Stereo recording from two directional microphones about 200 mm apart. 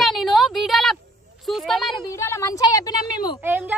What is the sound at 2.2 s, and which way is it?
A woman's voice, 15° left (ahead or behind).